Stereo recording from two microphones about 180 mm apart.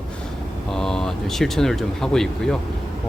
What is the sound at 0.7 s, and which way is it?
Speech, centre (ahead or behind).